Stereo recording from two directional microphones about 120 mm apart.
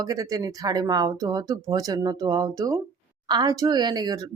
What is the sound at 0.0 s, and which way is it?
Speech, 30° right (ahead or behind).